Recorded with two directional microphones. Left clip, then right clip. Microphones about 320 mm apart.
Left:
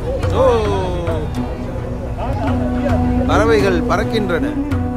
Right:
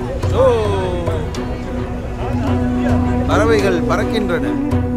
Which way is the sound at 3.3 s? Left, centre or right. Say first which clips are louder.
Left 1 dB; centre.